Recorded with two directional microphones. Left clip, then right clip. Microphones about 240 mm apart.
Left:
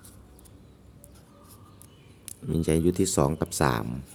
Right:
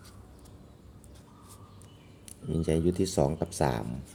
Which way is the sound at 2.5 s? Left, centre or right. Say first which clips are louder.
Left 3 dB; left.